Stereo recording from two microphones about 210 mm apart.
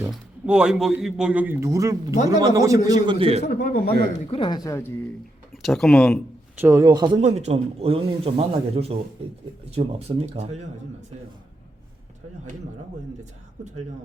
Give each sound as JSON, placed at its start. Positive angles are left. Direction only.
{"t": 0.0, "sound": "a man's voice", "side_deg": -5}
{"t": 3.4, "sound": "a man's voice", "side_deg": 45}
{"t": 4.3, "sound": "speech", "side_deg": 25}
{"t": 5.6, "sound": "speech", "side_deg": 0}
{"t": 6.6, "sound": "a man's voice", "side_deg": -10}
{"t": 7.2, "sound": "speech", "side_deg": -30}